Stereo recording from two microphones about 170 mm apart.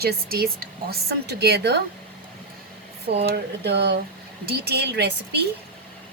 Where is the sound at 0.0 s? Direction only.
65° right (ahead or behind).